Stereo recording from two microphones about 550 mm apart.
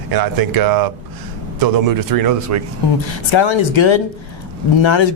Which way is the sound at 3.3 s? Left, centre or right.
Left.